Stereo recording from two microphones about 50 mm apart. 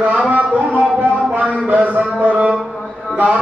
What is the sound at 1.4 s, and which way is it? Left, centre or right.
A man's voice, right.